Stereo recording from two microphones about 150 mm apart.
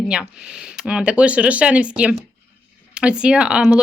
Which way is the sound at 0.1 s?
5° right (ahead or behind).